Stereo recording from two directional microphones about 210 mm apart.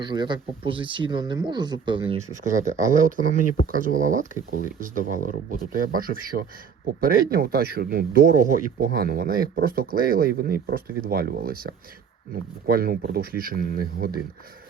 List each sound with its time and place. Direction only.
0.0 s speech: 20° right (ahead or behind)
2.5 s speech: 35° right (ahead or behind)